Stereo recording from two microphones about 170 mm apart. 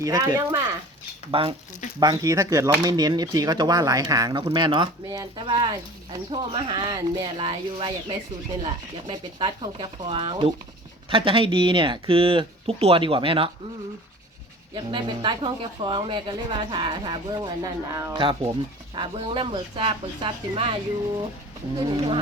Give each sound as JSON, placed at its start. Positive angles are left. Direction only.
{"t": 0.0, "sound": "speech", "side_deg": -25}
{"t": 1.3, "sound": "speech", "side_deg": -30}
{"t": 2.0, "sound": "speech", "side_deg": -20}
{"t": 14.8, "sound": "speech", "side_deg": -30}
{"t": 18.2, "sound": "speech", "side_deg": -30}
{"t": 21.8, "sound": "speech", "side_deg": -30}